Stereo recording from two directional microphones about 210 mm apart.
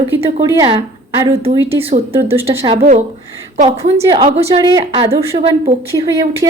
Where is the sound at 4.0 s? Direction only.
20° right (ahead or behind).